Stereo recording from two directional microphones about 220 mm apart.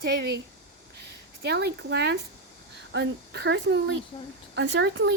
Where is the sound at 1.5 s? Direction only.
50° right (ahead or behind).